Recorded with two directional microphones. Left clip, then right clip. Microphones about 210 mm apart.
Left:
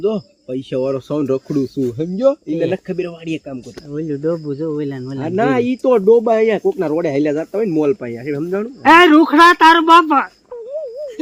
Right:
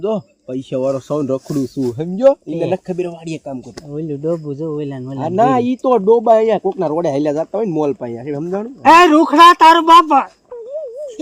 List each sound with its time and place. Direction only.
0.0 s speech: 50° right (ahead or behind)